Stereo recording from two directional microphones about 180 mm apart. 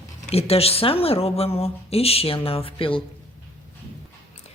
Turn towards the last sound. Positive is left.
turn(degrees=30)  # may be behind; listen again after turning